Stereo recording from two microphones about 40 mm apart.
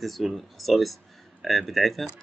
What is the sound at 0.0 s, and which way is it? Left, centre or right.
Speech, centre.